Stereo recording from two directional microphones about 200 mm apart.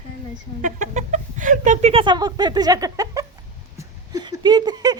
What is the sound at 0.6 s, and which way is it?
Speech, 40° right (ahead or behind).